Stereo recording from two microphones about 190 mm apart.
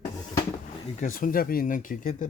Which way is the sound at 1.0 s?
45° left (ahead or behind).